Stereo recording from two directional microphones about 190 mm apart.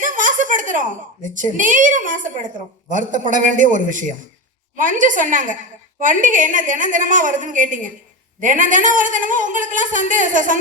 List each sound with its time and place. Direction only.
0.0 s a woman's voice: 45° right (ahead or behind)